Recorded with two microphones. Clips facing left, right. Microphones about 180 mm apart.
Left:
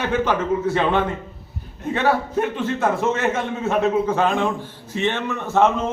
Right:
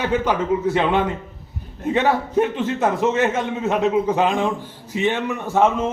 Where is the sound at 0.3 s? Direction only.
15° right (ahead or behind).